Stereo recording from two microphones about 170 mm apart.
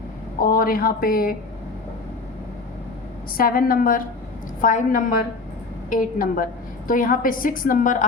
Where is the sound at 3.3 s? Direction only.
55° left (ahead or behind).